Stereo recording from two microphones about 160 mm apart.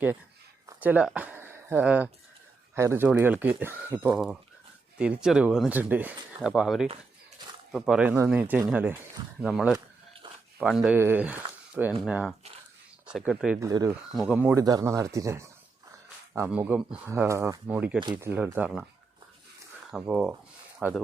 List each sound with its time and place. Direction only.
0.8 s speech: 10° right (ahead or behind)
9.4 s speech: centre (ahead or behind)
10.2 s a sound: 30° right (ahead or behind)
10.6 s speech: 5° right (ahead or behind)
13.6 s speech: 20° right (ahead or behind)
14.2 s speech: 5° right (ahead or behind)
14.6 s speech: 25° right (ahead or behind)
16.5 s speech: 10° right (ahead or behind)
19.9 s speech: 5° right (ahead or behind)